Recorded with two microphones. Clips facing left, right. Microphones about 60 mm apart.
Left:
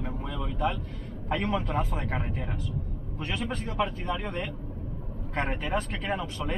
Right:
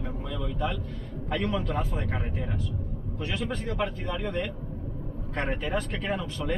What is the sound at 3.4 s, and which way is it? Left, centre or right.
Speech, centre.